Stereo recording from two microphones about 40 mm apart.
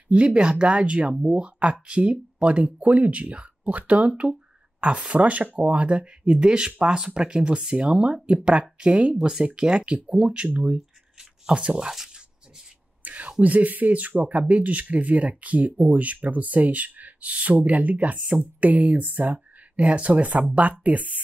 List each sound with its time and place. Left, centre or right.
0.1 s speech: right
11.7 s speech: centre
13.0 s a sound: right
13.4 s speech: right
19.8 s speech: right